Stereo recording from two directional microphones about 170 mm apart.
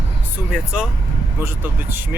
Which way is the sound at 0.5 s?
5° right (ahead or behind).